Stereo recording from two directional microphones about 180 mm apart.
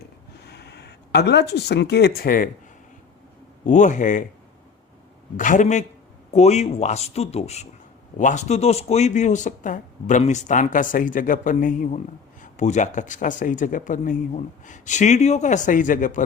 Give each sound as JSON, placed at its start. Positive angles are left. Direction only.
{"t": 0.4, "sound": "speech", "side_deg": 65}
{"t": 3.7, "sound": "speech", "side_deg": 45}
{"t": 5.4, "sound": "speech", "side_deg": 45}